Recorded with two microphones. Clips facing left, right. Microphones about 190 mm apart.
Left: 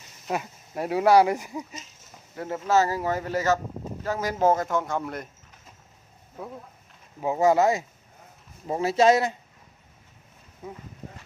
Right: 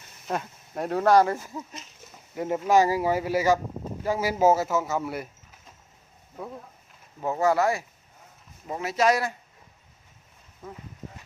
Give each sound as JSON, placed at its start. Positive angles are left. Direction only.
{"t": 0.3, "sound": "speech", "side_deg": 5}
{"t": 2.3, "sound": "speech", "side_deg": -15}
{"t": 7.2, "sound": "speech", "side_deg": 15}
{"t": 10.6, "sound": "speech", "side_deg": 15}